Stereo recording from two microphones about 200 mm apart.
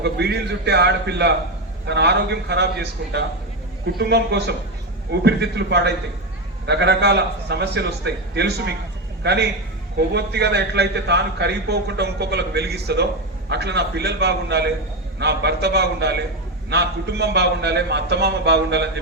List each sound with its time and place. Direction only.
0.0 s a man's voice: 55° right (ahead or behind)